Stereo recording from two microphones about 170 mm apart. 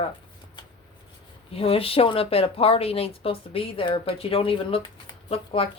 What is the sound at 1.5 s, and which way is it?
A woman's voice, 35° left (ahead or behind).